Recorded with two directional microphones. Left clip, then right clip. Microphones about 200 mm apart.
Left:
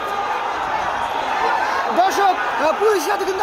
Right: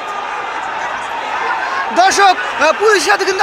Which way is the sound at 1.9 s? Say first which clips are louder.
Right 8 dB; 20° right (ahead or behind).